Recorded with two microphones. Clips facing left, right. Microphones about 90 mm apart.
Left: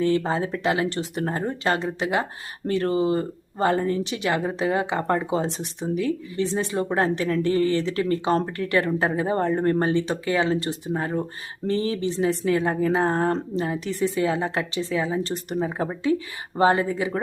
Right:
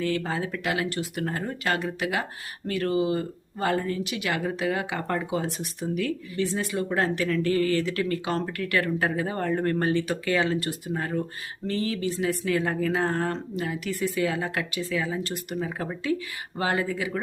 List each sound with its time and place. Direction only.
0.0 s speech: 25° left (ahead or behind)